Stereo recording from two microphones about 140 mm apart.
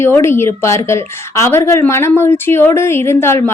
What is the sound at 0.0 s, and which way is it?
A woman's voice, 20° left (ahead or behind).